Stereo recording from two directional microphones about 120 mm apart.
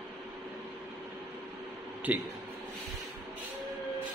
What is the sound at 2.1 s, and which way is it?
Speech, 15° right (ahead or behind).